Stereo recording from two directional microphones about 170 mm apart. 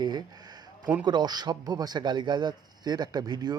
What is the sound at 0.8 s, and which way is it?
Speech, 10° right (ahead or behind).